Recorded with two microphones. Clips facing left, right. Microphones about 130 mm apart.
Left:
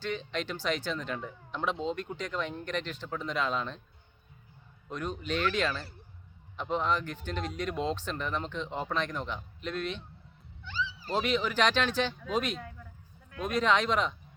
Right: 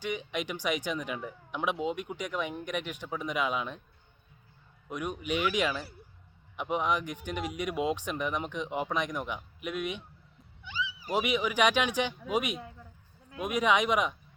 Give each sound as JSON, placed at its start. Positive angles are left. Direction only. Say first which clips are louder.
{"t": 0.0, "sound": "speech", "louder": "even", "side_deg": -15}
{"t": 4.9, "sound": "speech", "louder": "right 1 dB", "side_deg": -10}